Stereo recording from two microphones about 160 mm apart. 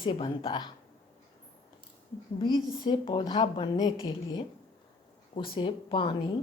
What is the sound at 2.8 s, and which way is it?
A woman's voice, 30° left (ahead or behind).